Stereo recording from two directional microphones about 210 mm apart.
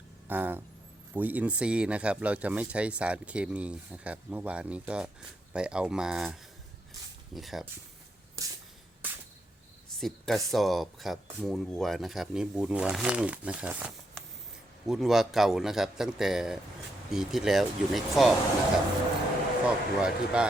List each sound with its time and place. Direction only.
0.3 s a sound: 10° right (ahead or behind)
1.1 s speech: 10° right (ahead or behind)
7.3 s speech: centre (ahead or behind)
8.4 s a sound: 15° right (ahead or behind)
10.0 s speech: centre (ahead or behind)
19.6 s speech: 5° right (ahead or behind)